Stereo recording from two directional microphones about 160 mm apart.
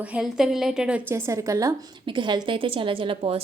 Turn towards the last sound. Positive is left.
turn(degrees=-35)  # may be behind; listen again after turning